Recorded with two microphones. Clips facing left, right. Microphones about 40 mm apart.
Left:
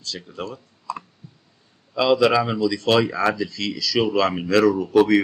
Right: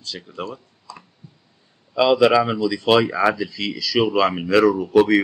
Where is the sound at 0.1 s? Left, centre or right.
Centre.